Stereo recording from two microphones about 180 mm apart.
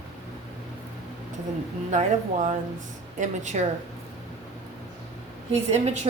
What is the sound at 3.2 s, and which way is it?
Speech, 40° right (ahead or behind).